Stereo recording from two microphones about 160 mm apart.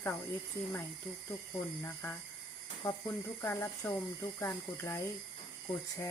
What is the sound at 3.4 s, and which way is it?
Speech, 15° left (ahead or behind).